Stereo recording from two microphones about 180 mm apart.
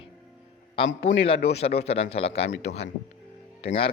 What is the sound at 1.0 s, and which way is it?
Speech, 35° left (ahead or behind).